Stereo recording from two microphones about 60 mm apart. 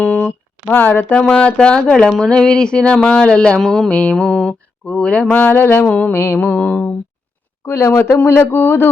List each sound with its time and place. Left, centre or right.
0.0 s a sound: centre
0.3 s speech: left
1.2 s speech: centre
3.6 s speech: centre
5.3 s speech: left
5.8 s a sound: centre
6.1 s speech: left
6.4 s a sound: left
7.7 s speech: left